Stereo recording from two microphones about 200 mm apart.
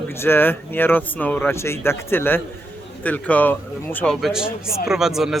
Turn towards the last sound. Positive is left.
turn(degrees=0)  # may be behind; listen again after turning